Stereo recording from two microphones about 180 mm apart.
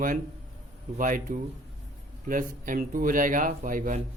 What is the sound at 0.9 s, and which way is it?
Speech, 45° right (ahead or behind).